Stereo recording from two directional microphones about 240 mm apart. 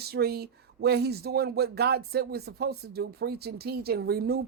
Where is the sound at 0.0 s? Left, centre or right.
Right.